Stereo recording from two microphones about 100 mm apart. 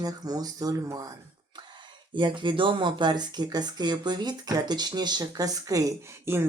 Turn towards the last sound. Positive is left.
turn(degrees=-25)  # may be behind; listen again after turning